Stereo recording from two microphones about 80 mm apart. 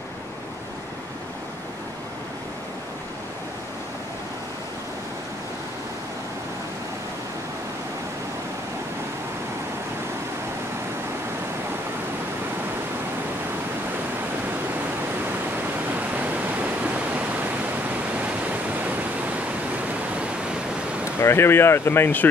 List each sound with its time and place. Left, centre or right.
15.5 s pink noise: right
18.1 s waterfall: centre
21.2 s speech: left